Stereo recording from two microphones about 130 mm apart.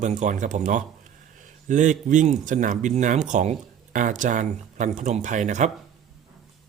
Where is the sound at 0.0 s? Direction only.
75° right (ahead or behind).